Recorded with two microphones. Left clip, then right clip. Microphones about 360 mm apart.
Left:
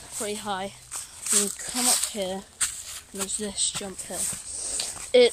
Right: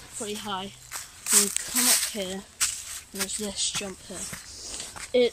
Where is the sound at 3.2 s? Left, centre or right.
Centre.